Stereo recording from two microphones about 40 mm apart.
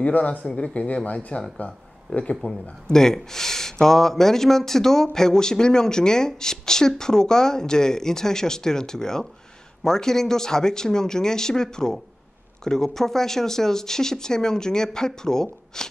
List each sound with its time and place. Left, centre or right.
0.0 s speech: left
1.6 s speech: left
2.9 s speech: centre